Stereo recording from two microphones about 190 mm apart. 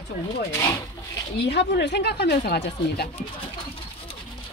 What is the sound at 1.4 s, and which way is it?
Speech, 65° left (ahead or behind).